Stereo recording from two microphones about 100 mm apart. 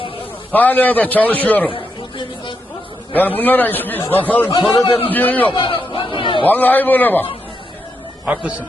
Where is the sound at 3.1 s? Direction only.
20° left (ahead or behind).